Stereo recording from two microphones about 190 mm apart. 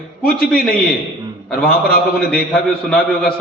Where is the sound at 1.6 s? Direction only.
50° left (ahead or behind).